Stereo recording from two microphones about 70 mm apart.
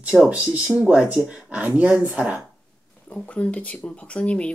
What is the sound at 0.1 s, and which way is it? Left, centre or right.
Speech, centre.